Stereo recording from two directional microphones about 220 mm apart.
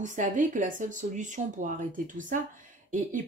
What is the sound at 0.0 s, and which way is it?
A woman's voice, 35° right (ahead or behind).